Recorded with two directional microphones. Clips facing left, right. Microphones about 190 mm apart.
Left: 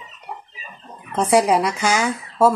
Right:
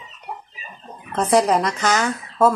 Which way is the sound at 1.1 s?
10° left (ahead or behind).